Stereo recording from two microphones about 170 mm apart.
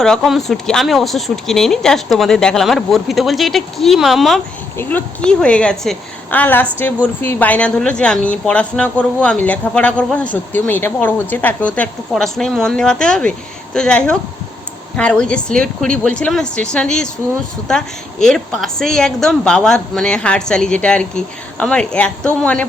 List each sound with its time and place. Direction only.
0.0 s a woman's voice: centre (ahead or behind)
4.8 s a woman's voice: 10° left (ahead or behind)